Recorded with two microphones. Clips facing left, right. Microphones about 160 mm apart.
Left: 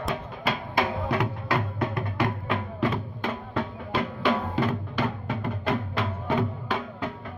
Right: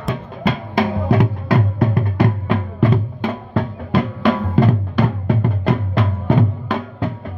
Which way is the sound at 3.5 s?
50° right (ahead or behind).